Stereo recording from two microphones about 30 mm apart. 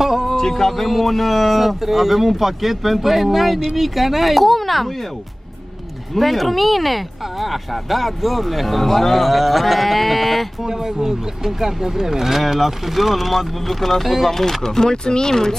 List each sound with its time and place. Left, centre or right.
0.0 s a sound: centre
0.4 s speech: centre
0.8 s speech: centre
6.1 s speech: centre
10.6 s speech: centre
14.3 s speech: centre